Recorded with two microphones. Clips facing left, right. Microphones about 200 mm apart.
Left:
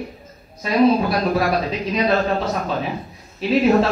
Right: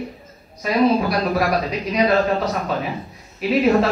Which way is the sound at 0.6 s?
Centre (ahead or behind).